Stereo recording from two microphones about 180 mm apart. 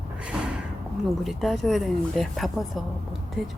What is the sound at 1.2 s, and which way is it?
Speech, centre (ahead or behind).